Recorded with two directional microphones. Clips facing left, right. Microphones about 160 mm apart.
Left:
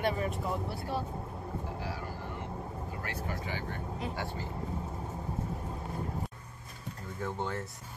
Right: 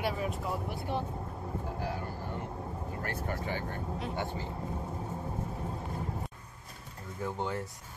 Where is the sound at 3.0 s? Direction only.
50° right (ahead or behind).